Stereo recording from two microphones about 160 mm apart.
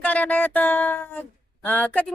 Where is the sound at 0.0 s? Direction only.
10° left (ahead or behind).